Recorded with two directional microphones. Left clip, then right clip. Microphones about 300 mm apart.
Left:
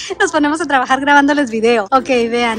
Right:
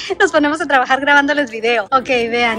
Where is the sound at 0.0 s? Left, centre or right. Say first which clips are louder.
Right 1 dB; centre.